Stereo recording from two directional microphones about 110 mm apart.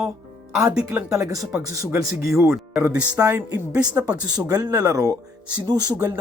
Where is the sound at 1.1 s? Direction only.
30° right (ahead or behind).